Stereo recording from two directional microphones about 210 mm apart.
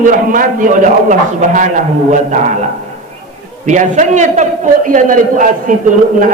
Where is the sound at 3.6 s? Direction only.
35° right (ahead or behind).